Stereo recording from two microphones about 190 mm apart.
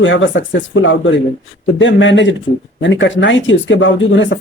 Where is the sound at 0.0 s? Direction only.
80° left.